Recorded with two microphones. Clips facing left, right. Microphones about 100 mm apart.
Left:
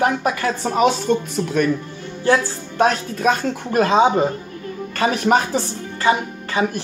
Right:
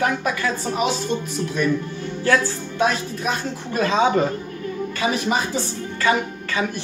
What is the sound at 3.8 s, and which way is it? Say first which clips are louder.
Speech: left 3 dB; 30° left (ahead or behind).